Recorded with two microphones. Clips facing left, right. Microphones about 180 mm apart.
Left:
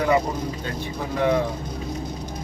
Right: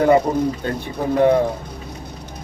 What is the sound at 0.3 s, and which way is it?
Speech, 45° right (ahead or behind).